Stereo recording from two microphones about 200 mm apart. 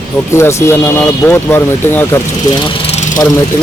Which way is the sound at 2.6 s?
30° left (ahead or behind).